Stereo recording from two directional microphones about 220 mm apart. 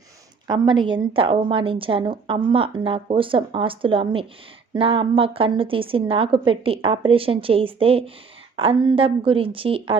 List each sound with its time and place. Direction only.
0.4 s a woman's voice: 20° right (ahead or behind)